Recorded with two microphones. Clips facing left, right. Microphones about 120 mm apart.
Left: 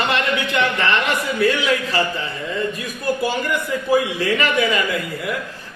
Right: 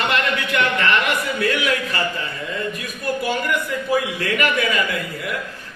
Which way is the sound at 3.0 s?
30° left (ahead or behind).